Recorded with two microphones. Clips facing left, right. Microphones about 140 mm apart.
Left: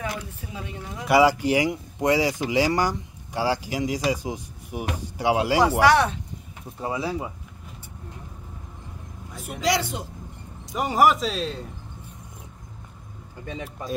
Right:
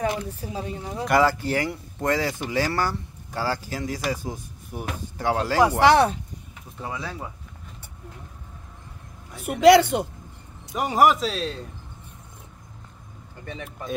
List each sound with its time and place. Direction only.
0.0 s a woman's voice: 30° right (ahead or behind)
1.0 s speech: 10° left (ahead or behind)
5.8 s a woman's voice: 30° right (ahead or behind)
6.8 s speech: 25° left (ahead or behind)
9.3 s a man's voice: 65° right (ahead or behind)
10.7 s speech: centre (ahead or behind)